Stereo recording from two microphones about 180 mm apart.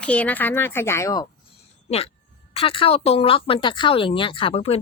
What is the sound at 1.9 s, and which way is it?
Speech, 35° left (ahead or behind).